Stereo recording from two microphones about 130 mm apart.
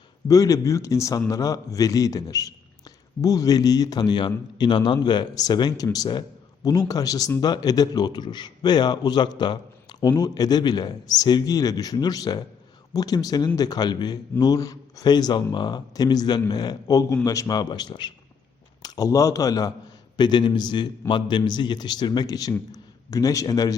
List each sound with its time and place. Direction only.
0.3 s a man's voice: 25° left (ahead or behind)